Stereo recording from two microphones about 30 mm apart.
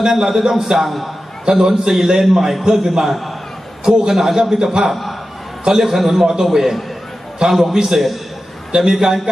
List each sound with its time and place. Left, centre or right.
0.0 s a man's voice: centre
0.9 s a man's voice: centre
1.5 s a man's voice: right
3.1 s a man's voice: centre
3.8 s a man's voice: right
4.1 s a man's voice: centre
4.9 s a man's voice: centre
5.6 s a man's voice: centre
6.0 s a man's voice: centre